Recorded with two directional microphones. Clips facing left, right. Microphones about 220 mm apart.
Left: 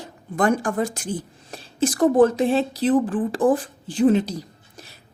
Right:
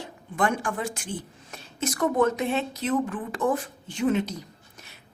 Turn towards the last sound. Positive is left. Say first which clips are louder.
# left 4 dB
turn(degrees=35)  # may be behind; listen again after turning